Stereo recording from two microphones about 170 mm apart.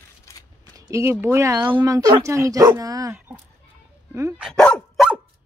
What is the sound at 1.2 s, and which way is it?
Speech, 15° right (ahead or behind).